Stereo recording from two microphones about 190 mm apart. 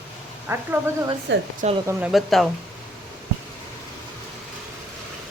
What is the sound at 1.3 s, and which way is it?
Speech, 70° right (ahead or behind).